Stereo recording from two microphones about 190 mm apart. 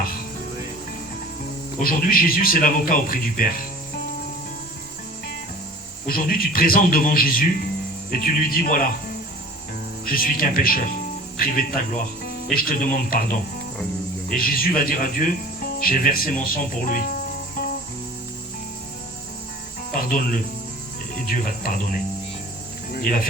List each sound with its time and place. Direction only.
1.8 s speech: 50° left (ahead or behind)
6.1 s speech: 50° left (ahead or behind)
10.1 s speech: 50° left (ahead or behind)
14.3 s speech: 50° left (ahead or behind)
19.9 s cricket: 45° left (ahead or behind)
21.2 s speech: 45° left (ahead or behind)